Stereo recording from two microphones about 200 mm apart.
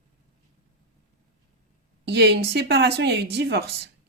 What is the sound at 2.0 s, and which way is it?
Speech, 55° right (ahead or behind).